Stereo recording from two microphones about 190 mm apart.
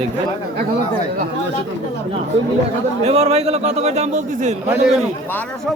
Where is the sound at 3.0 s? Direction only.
30° right (ahead or behind).